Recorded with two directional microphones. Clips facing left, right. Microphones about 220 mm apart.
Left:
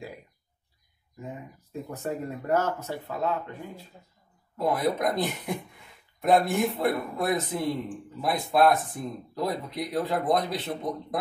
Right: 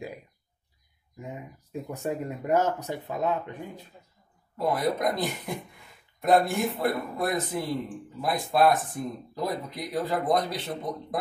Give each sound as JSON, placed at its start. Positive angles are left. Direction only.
{"t": 1.2, "sound": "speech", "side_deg": -15}
{"t": 4.6, "sound": "speech", "side_deg": 0}